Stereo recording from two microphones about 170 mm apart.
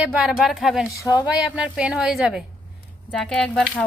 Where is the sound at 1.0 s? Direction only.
20° left (ahead or behind).